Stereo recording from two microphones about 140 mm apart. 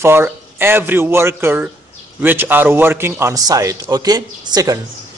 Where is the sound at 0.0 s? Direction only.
15° right (ahead or behind).